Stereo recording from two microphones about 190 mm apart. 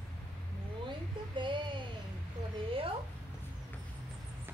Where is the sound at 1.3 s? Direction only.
25° right (ahead or behind).